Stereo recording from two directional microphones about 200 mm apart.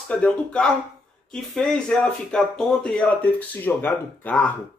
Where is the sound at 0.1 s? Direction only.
5° left (ahead or behind).